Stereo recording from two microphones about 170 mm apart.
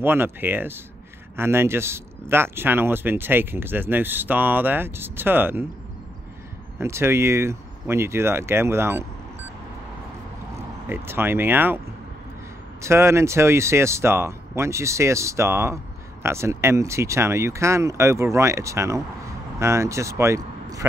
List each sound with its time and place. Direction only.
0.0 s speech: 10° right (ahead or behind)
6.8 s speech: 15° right (ahead or behind)
10.9 s speech: 15° right (ahead or behind)
12.8 s speech: 15° right (ahead or behind)